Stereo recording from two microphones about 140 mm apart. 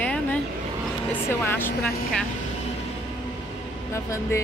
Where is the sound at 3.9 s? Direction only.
20° left (ahead or behind).